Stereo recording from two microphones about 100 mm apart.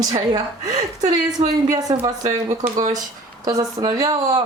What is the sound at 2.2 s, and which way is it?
A woman's voice, 40° right (ahead or behind).